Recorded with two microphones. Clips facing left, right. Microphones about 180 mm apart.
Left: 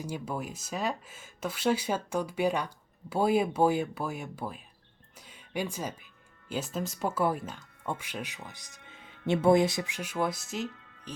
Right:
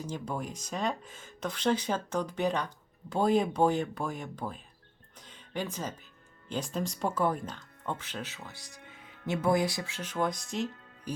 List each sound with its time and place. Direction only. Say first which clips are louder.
0.0 s speech: left 1 dB; 10° left (ahead or behind)
5.2 s music: left 2 dB; 10° left (ahead or behind)
6.5 s speech: even; 5° left (ahead or behind)
9.2 s speech: left 5 dB; 25° left (ahead or behind); by 10.7 s 5° left (ahead or behind)